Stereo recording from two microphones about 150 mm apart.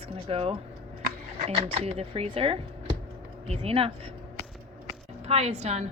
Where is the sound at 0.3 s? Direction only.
40° right (ahead or behind).